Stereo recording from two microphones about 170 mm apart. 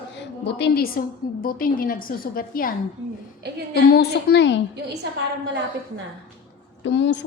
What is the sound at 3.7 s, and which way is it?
Speech, 70° left (ahead or behind).